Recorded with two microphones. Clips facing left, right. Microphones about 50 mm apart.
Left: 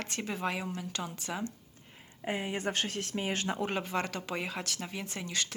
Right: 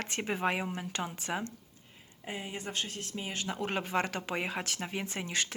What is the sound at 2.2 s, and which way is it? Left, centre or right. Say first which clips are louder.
Speech: left 6 dB; left.